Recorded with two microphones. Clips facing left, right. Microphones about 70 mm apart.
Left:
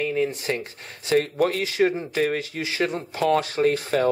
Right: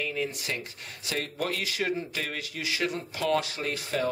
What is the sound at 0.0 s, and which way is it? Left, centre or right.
Speech, left.